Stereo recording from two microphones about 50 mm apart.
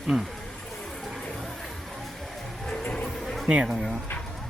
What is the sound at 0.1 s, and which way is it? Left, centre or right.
Speech, centre.